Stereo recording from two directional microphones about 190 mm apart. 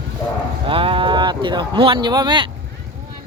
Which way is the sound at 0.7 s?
30° right (ahead or behind).